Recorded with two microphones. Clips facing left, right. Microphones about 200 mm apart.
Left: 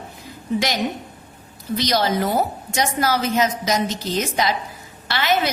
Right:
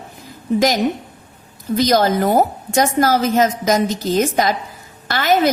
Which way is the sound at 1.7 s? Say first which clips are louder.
Right 5 dB; 50° right (ahead or behind).